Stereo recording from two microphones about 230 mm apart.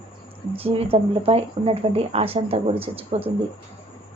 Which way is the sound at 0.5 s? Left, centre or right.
Right.